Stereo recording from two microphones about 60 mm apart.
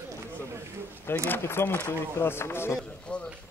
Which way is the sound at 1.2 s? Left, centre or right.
Left.